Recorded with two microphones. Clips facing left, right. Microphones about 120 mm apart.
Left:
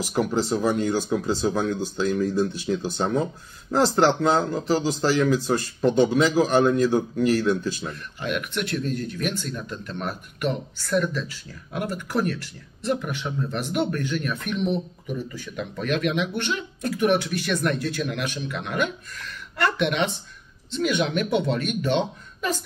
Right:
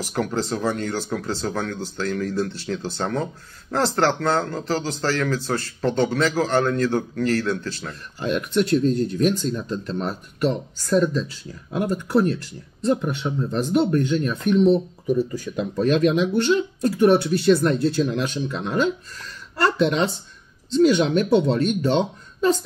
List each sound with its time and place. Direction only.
0.0 s a man's voice: 10° left (ahead or behind)
7.9 s speech: 30° right (ahead or behind)